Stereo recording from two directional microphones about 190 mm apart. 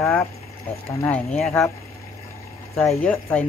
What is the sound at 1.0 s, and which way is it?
Speech, 5° left (ahead or behind).